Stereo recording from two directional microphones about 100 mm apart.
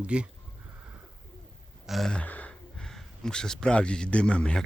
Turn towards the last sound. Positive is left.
turn(degrees=10)  # may be behind; listen again after turning